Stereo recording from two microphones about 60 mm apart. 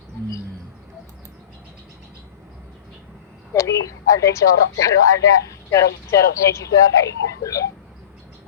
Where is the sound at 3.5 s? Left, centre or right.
Left.